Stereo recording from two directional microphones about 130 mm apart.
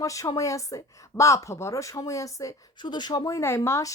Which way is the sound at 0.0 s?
25° left (ahead or behind).